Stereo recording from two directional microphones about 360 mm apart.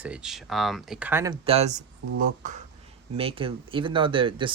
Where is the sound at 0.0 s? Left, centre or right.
Centre.